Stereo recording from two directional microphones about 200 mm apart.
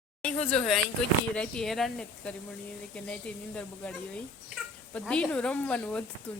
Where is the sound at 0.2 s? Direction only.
5° left (ahead or behind).